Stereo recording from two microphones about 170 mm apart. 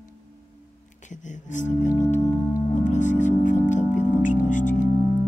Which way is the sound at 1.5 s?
45° left (ahead or behind).